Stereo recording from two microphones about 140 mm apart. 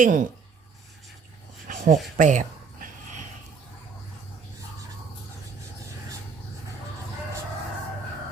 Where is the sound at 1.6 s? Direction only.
85° right.